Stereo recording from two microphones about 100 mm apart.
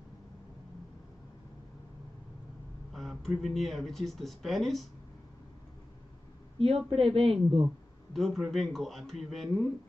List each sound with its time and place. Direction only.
2.9 s speech: centre (ahead or behind)
6.9 s speech: 65° right (ahead or behind)
8.1 s speech: centre (ahead or behind)